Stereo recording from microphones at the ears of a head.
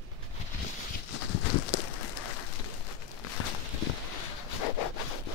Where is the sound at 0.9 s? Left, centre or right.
Left.